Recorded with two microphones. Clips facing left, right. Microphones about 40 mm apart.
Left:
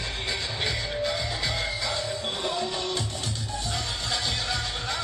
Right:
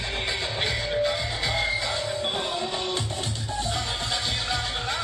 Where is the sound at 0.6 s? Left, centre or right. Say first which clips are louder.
Right 4 dB; centre.